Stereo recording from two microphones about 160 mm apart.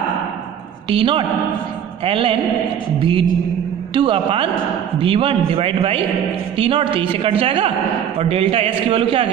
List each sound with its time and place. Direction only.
0.8 s a woman's voice: 35° right (ahead or behind)